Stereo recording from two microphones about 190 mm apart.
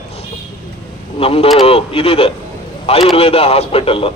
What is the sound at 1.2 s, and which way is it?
Speech, 30° left (ahead or behind).